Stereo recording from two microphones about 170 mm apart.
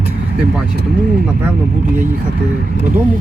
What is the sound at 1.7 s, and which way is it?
Speech, 50° right (ahead or behind).